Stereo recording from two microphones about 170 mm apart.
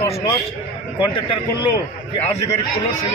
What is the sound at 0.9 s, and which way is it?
Speech, 30° left (ahead or behind).